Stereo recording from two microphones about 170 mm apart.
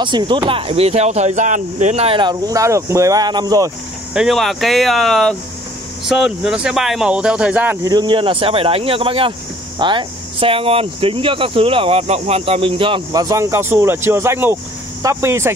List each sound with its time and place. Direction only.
0.0 s speech: 25° right (ahead or behind)
4.1 s speech: centre (ahead or behind)